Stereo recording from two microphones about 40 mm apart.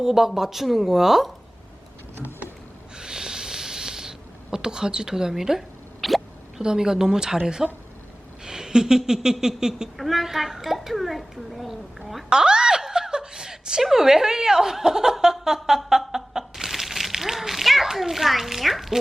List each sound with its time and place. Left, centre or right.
0.0 s speech: centre
3.0 s snort: centre
4.5 s speech: centre
5.3 s a sound: centre
6.6 s speech: centre
10.0 s speech: centre
12.3 s a sound: centre
13.9 s speech: centre
15.9 s a sound: centre
17.9 s a child's voice: centre